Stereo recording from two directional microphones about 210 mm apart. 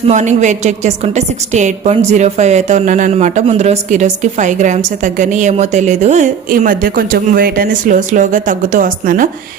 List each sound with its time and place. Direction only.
0.1 s speech: 35° right (ahead or behind)